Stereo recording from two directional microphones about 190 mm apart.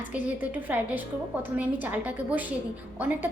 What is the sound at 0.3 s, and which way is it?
A woman's voice, 10° right (ahead or behind).